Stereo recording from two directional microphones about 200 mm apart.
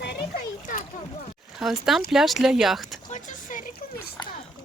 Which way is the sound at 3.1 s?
40° left (ahead or behind).